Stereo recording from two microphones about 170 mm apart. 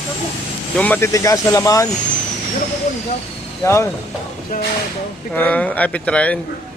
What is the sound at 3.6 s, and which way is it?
Speech, 15° left (ahead or behind).